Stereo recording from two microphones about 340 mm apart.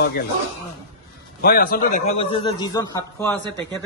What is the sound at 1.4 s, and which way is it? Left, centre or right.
Speech, left.